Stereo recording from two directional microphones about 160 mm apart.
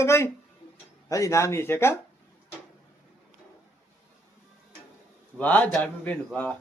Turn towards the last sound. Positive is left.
turn(degrees=10)  # may be behind; listen again after turning